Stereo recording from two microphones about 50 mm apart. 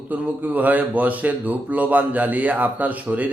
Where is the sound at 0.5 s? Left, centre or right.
Right.